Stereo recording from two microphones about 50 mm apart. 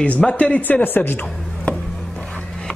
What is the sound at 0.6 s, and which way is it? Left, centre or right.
Speech, left.